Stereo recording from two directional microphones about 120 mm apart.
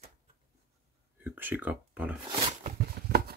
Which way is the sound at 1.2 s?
15° right (ahead or behind).